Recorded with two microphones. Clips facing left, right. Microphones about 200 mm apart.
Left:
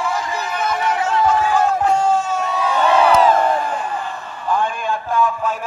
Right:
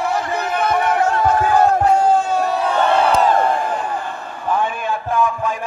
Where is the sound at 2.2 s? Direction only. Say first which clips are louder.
Right 3 dB; 60° right (ahead or behind).